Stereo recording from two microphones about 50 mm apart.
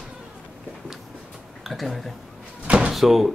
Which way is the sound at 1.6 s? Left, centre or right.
Centre.